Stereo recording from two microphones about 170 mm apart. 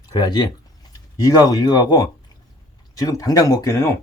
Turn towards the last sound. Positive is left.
turn(degrees=15)  # may be behind; listen again after turning